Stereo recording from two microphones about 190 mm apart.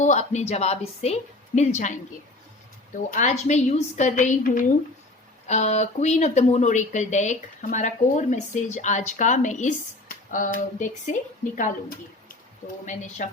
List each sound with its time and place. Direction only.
0.0 s speech: 40° left (ahead or behind)
3.1 s speech: 40° left (ahead or behind)